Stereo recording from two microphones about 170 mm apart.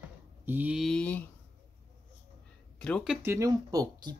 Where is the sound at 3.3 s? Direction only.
20° right (ahead or behind).